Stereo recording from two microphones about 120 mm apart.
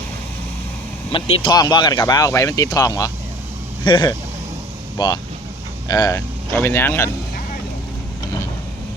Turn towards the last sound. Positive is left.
turn(degrees=20)  # may be behind; listen again after turning